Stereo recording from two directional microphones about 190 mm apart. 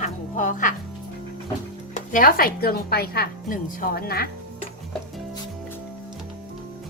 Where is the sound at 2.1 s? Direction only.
50° left (ahead or behind).